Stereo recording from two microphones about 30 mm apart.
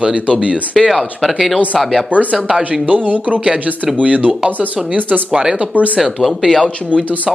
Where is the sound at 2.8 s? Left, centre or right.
Right.